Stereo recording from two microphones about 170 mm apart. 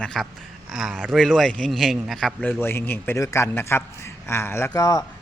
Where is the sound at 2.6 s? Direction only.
15° left (ahead or behind).